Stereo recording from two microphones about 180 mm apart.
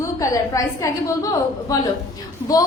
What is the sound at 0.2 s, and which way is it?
A woman's voice, 20° left (ahead or behind).